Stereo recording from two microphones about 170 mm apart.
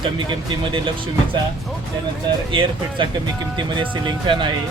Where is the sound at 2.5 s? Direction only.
30° right (ahead or behind).